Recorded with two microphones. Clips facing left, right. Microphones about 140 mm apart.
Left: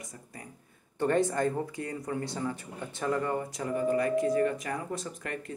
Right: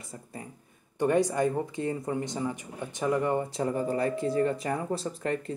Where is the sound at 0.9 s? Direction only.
15° right (ahead or behind).